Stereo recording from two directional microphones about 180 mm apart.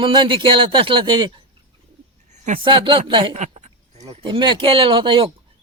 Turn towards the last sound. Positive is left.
turn(degrees=-30)  # may be behind; listen again after turning